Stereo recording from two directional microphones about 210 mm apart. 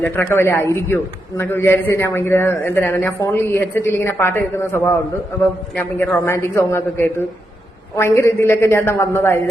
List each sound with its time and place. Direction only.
0.0 s a man's voice: 10° left (ahead or behind)